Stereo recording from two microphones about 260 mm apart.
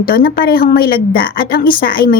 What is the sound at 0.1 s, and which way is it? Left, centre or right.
A woman's voice, left.